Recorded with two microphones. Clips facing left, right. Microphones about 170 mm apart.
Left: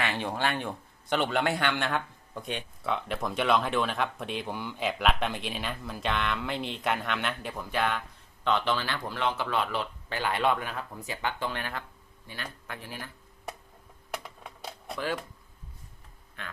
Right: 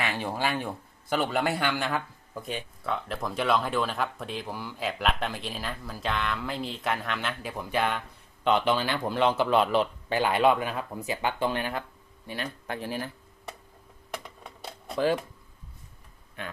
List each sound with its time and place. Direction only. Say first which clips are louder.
0.0 s a man's voice: even; 5° right (ahead or behind)
8.4 s speech: right 4 dB; 15° right (ahead or behind)
12.3 s speech: right 7 dB; 30° right (ahead or behind)
14.1 s a sound: even; 5° left (ahead or behind)
14.9 s speech: right 7 dB; 30° right (ahead or behind)